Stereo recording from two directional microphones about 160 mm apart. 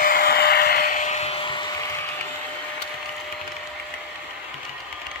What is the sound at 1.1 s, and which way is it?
Vacuum cleaner, 40° left (ahead or behind).